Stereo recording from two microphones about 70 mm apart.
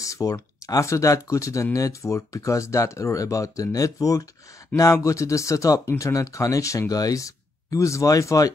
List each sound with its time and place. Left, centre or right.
0.0 s speech: left